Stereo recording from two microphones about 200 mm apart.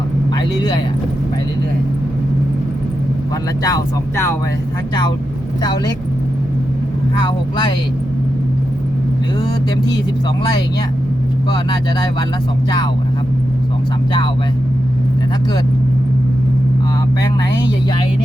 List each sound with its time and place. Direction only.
0.3 s speech: 20° left (ahead or behind)
3.6 s speech: 15° left (ahead or behind)
7.2 s speech: 20° left (ahead or behind)
17.2 s speech: 20° left (ahead or behind)